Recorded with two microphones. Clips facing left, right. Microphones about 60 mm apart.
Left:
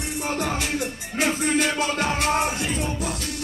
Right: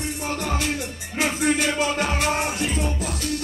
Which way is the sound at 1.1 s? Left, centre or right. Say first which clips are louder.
Even; centre.